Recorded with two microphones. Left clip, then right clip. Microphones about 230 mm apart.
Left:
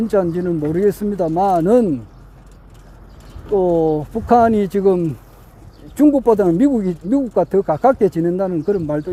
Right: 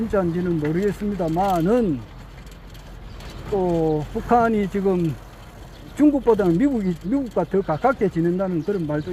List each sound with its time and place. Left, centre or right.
0.1 s speech: left
3.5 s speech: left
6.2 s speech: left